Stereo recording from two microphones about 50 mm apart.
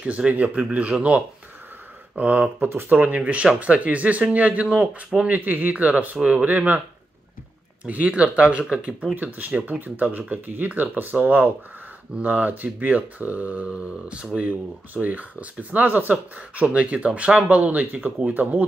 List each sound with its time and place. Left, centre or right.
0.0 s speech: right
2.7 s speech: right
3.0 s speech: right
4.6 s a man's voice: centre
5.3 s speech: right
7.8 s speech: right
9.1 s speech: right